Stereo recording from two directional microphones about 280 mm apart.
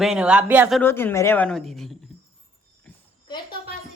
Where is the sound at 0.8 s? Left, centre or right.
Centre.